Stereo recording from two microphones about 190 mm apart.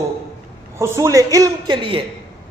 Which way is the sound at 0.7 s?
15° right (ahead or behind).